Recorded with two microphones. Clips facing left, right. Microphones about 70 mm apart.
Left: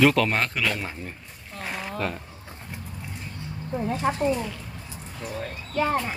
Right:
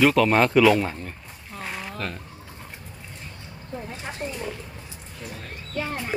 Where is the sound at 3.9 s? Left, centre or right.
Left.